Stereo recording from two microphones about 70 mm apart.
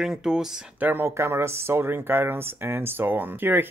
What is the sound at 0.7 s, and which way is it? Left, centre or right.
Speech, right.